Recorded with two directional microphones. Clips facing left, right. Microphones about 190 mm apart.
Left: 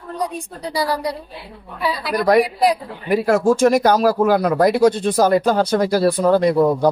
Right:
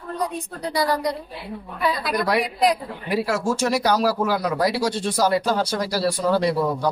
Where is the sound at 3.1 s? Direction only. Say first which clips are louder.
Left 7 dB; 50° left (ahead or behind).